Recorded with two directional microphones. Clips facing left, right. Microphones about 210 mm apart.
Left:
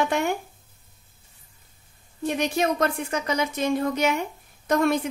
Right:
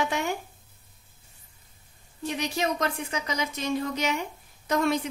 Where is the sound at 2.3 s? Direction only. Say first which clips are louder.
Left 5 dB; 50° left (ahead or behind).